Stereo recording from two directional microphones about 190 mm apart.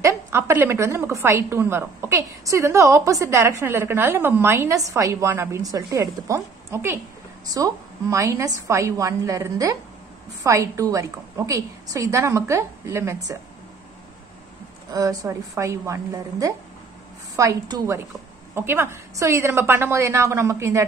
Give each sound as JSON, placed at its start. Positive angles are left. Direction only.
{"t": 0.0, "sound": "a woman's voice", "side_deg": -15}
{"t": 14.9, "sound": "a woman's voice", "side_deg": -20}